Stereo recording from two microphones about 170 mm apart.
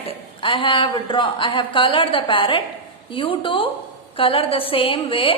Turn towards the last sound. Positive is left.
turn(degrees=30)  # may be behind; listen again after turning